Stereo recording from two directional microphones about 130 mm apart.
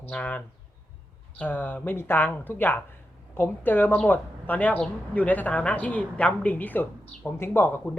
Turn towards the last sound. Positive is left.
turn(degrees=15)  # may be behind; listen again after turning